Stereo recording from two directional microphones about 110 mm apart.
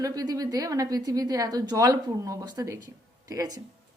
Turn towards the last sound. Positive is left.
turn(degrees=-35)  # may be behind; listen again after turning